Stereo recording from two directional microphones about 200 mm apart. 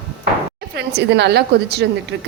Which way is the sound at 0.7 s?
55° right (ahead or behind).